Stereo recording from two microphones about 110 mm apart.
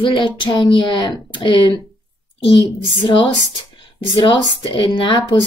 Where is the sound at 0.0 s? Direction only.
45° left (ahead or behind).